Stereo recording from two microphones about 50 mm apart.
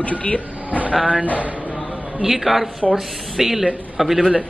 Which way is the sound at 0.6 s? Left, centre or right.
Right.